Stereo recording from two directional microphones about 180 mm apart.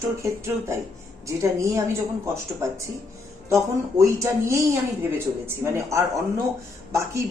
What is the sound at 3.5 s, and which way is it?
A woman's voice, 15° right (ahead or behind).